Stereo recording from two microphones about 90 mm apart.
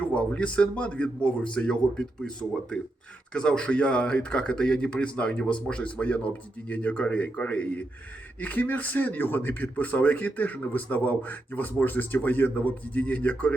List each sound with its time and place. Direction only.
0.0 s speech: 15° left (ahead or behind)